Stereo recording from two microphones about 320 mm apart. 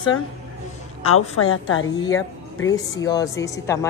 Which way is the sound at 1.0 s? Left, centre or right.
Left.